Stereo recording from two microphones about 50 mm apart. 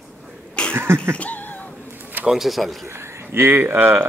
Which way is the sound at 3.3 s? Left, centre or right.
Right.